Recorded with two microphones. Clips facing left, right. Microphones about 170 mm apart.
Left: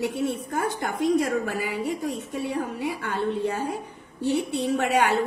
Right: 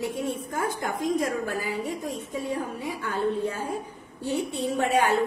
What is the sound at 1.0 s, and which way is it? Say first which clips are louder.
A woman's voice: left 5 dB; 75° left (ahead or behind).